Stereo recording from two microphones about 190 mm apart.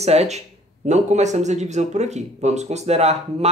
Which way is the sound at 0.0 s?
35° right (ahead or behind).